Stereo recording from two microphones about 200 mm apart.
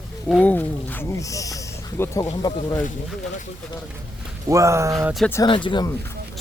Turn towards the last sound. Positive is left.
turn(degrees=25)  # may be behind; listen again after turning